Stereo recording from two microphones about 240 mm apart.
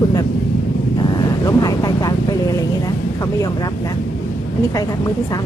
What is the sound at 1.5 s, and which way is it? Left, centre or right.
Vehicle, centre.